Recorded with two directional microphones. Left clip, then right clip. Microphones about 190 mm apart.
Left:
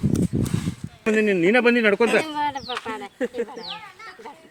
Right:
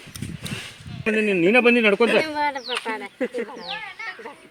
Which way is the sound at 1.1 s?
Centre (ahead or behind).